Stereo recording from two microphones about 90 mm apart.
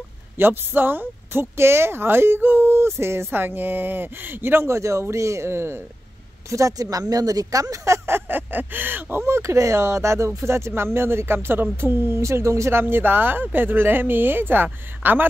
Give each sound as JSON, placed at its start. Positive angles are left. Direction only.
{"t": 0.4, "sound": "speech", "side_deg": -25}
{"t": 6.5, "sound": "speech", "side_deg": -40}
{"t": 8.3, "sound": "speech", "side_deg": -20}